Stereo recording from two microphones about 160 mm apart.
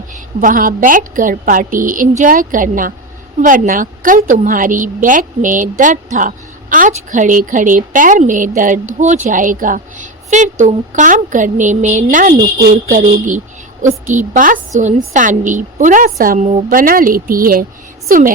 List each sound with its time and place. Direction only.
0.1 s a woman's voice: 55° right (ahead or behind)
12.7 s a sound: 55° right (ahead or behind)
14.1 s a woman's voice: 55° right (ahead or behind)